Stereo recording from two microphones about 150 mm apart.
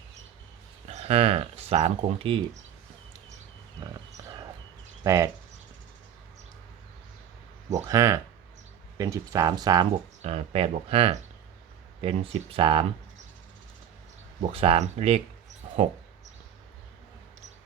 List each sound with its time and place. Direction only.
0.9 s speech: 45° right (ahead or behind)
5.0 s speech: 20° right (ahead or behind)
7.8 s speech: 20° right (ahead or behind)
10.2 s speech: 40° right (ahead or behind)
14.5 s speech: 40° right (ahead or behind)